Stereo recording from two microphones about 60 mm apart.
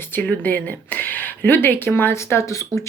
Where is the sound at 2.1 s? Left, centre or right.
Left.